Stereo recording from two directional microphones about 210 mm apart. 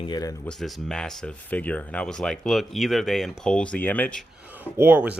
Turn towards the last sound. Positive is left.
turn(degrees=-5)  # may be behind; listen again after turning